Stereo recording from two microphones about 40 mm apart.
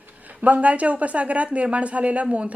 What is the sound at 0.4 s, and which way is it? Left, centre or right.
A woman's voice, right.